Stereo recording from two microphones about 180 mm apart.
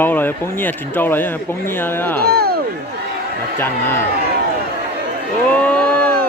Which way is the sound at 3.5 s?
10° left (ahead or behind).